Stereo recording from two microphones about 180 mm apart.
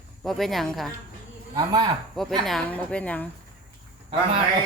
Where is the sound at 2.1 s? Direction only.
Centre (ahead or behind).